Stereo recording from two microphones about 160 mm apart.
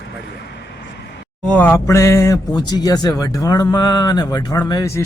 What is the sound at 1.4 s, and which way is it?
Speech, 10° left (ahead or behind).